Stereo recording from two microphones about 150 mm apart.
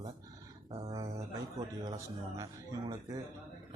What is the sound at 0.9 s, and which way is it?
A man's voice, 20° right (ahead or behind).